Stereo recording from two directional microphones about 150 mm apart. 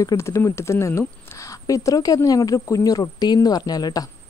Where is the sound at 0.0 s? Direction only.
20° left (ahead or behind).